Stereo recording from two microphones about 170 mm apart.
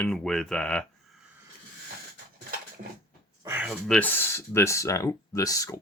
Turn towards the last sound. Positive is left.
turn(degrees=20)  # may be behind; listen again after turning